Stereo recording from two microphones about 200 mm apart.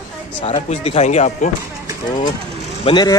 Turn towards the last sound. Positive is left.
turn(degrees=25)  # may be behind; listen again after turning